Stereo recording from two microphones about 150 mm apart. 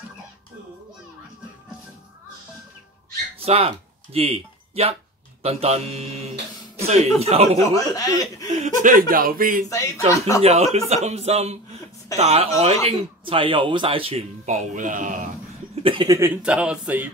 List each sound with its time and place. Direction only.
3.3 s speech: 40° right (ahead or behind)
6.8 s a sound: 45° right (ahead or behind)
7.2 s speech: 45° right (ahead or behind)
7.7 s speech: 25° left (ahead or behind)
8.6 s speech: 65° right (ahead or behind)
9.7 s speech: 20° left (ahead or behind)
10.4 s speech: 45° right (ahead or behind)
15.7 s a sound: 35° right (ahead or behind)
16.1 s speech: 15° right (ahead or behind)
16.4 s speech: 5° right (ahead or behind)